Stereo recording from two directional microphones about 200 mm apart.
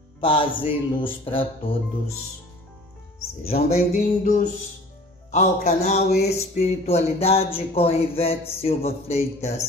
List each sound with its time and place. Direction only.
0.2 s music: 25° left (ahead or behind)
3.9 s speech: 40° left (ahead or behind)
5.9 s music: 55° left (ahead or behind)
6.2 s speech: 35° left (ahead or behind)